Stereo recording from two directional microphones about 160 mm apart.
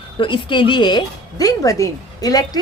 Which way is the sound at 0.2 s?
30° left (ahead or behind).